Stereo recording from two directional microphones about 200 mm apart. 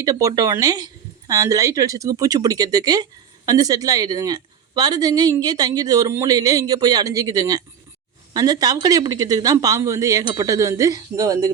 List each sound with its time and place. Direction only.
0.0 s speech: 15° right (ahead or behind)